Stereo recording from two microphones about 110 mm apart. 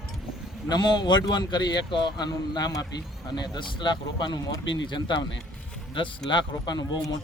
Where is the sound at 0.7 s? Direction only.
40° left (ahead or behind).